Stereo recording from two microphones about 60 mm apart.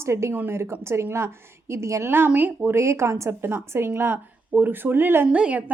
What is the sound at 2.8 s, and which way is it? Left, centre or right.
A woman's voice, right.